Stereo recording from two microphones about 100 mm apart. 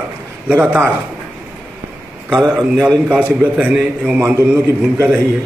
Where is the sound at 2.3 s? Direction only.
5° right (ahead or behind).